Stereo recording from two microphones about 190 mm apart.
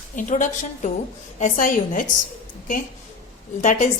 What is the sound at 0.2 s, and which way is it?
A woman's voice, 45° left (ahead or behind).